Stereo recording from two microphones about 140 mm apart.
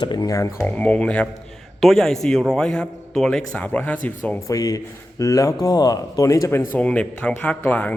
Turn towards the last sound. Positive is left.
turn(degrees=10)  # may be behind; listen again after turning